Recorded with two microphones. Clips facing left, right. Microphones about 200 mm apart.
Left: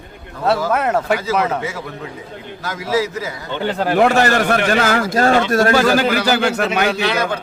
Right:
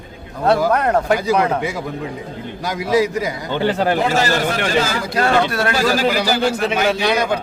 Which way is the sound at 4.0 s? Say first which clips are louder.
Left 4 dB; 65° left (ahead or behind).